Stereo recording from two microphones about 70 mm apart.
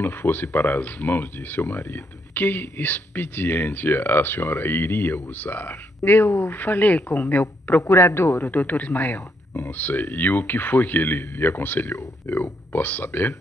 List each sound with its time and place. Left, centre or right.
0.0 s speech: left
7.9 s speech: left